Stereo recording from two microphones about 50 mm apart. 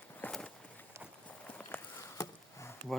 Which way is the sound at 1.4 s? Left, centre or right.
Left.